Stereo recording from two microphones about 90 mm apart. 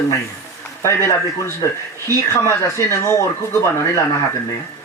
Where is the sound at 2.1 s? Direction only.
35° right (ahead or behind).